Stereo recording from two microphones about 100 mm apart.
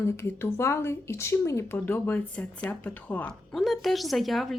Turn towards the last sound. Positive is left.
turn(degrees=0)  # may be behind; listen again after turning